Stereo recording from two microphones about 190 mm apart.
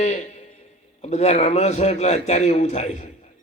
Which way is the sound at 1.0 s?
35° left (ahead or behind).